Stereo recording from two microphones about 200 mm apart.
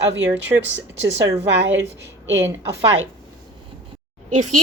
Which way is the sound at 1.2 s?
65° right (ahead or behind).